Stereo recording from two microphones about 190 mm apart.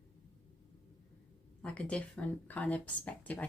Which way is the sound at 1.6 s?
5° left (ahead or behind).